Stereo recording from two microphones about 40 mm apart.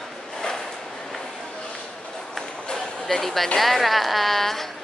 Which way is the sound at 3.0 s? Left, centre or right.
Centre.